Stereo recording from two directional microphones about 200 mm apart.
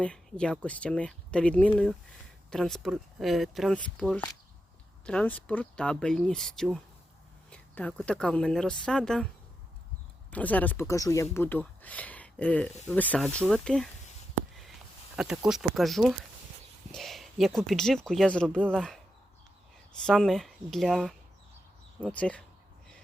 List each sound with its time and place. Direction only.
0.0 s speech: 5° left (ahead or behind)
10.3 s speech: 10° left (ahead or behind)
15.1 s speech: 5° right (ahead or behind)
20.1 s speech: centre (ahead or behind)